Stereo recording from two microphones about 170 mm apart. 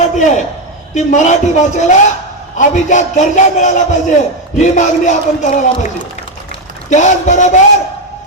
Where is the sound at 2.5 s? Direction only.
45° left (ahead or behind).